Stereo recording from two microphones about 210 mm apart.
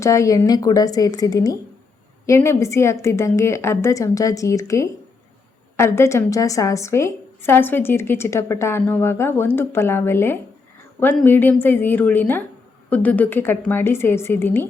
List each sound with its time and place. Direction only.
0.0 s a woman's voice: 15° left (ahead or behind)